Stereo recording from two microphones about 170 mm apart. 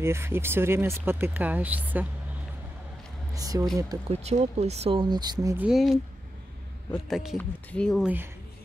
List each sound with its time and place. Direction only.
0.0 s speech: 15° right (ahead or behind)
3.3 s speech: 20° right (ahead or behind)
4.1 s speech: 40° right (ahead or behind); by 5.7 s 20° right (ahead or behind)
5.7 s speech: centre (ahead or behind)